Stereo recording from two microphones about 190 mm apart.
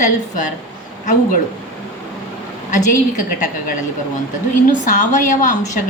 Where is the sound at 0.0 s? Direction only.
40° left (ahead or behind).